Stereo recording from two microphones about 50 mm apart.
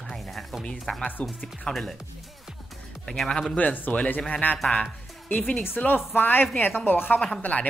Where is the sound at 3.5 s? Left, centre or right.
Left.